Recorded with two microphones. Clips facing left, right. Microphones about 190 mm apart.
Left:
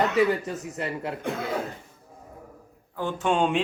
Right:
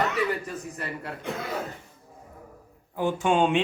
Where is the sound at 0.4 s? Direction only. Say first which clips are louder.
Left 3 dB; 25° left (ahead or behind).